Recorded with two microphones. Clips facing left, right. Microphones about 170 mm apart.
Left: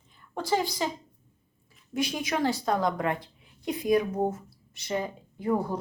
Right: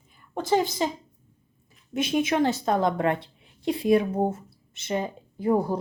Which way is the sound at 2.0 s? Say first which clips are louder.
Right 5 dB; 25° right (ahead or behind).